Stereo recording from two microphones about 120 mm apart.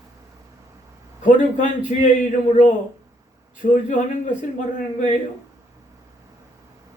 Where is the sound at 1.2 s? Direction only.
90° left.